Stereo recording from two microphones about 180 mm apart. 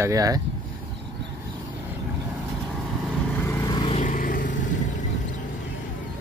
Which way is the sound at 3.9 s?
45° left (ahead or behind).